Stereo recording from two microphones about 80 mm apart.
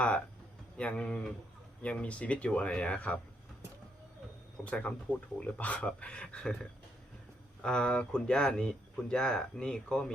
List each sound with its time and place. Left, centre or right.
0.8 s speech: centre
4.6 s speech: centre
7.6 s speech: centre